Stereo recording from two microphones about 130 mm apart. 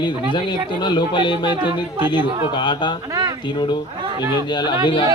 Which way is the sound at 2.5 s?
35° left (ahead or behind).